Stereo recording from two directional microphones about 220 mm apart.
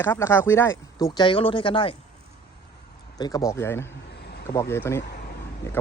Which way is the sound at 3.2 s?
15° left (ahead or behind).